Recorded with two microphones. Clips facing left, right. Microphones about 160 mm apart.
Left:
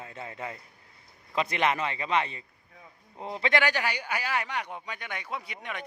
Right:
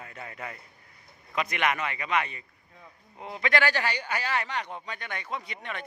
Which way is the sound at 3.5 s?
15° left (ahead or behind).